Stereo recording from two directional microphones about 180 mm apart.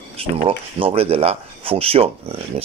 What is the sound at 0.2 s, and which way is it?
Speech, 30° right (ahead or behind).